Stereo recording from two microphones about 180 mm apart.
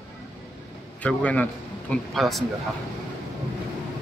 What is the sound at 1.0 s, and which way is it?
A man's voice, 10° left (ahead or behind).